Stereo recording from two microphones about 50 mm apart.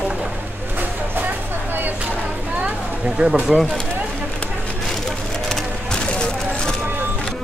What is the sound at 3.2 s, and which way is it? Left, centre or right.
Speech, right.